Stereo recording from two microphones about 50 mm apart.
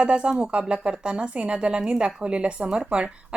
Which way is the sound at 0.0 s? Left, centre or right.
Centre.